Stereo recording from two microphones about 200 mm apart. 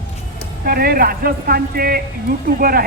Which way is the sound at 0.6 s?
50° right (ahead or behind).